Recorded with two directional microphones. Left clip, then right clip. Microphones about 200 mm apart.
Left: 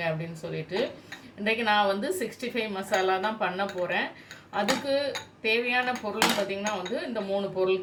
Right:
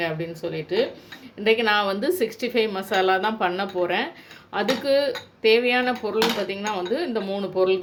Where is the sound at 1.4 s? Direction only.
50° right (ahead or behind).